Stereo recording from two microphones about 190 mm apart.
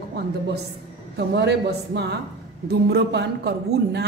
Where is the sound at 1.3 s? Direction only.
60° right (ahead or behind).